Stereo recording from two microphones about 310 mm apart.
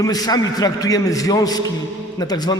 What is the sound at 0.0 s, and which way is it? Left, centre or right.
A man's voice, centre.